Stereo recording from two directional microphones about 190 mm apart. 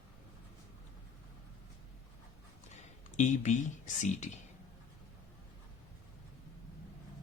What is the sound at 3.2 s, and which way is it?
Speech, 40° left (ahead or behind).